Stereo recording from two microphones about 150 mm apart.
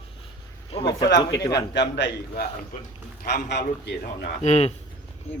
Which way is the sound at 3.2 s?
85° left.